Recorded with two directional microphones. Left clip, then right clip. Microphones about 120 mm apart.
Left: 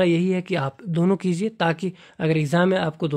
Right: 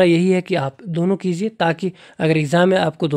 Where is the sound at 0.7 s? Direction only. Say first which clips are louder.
Right 2 dB; 5° right (ahead or behind).